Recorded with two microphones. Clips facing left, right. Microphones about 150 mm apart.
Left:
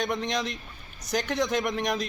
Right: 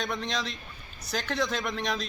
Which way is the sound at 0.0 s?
20° left (ahead or behind).